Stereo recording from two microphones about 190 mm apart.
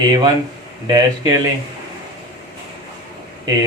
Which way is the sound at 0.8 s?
20° right (ahead or behind).